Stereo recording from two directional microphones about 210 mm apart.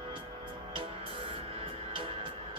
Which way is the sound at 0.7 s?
25° right (ahead or behind).